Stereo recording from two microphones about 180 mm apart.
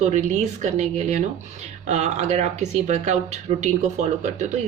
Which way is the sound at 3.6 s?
40° right (ahead or behind).